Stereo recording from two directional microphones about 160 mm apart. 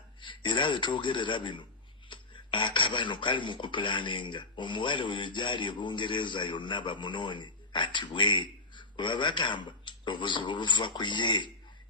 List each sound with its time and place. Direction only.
0.2 s a man's voice: 30° left (ahead or behind)